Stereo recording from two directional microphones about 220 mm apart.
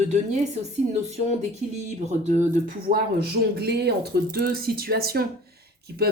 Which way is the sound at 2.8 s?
45° right (ahead or behind).